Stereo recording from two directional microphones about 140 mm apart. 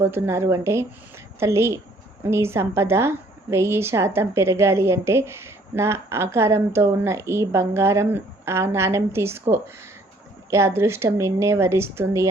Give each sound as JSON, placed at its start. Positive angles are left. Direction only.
{"t": 0.0, "sound": "a woman's voice", "side_deg": -15}